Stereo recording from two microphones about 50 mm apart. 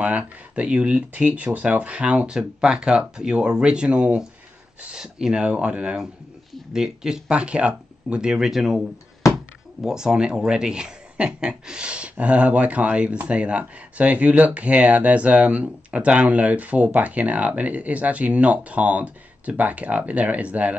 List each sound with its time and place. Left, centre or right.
0.0 s speech: right
4.9 s speech: centre
5.4 s speech: right
6.7 s speech: centre
9.8 s speech: centre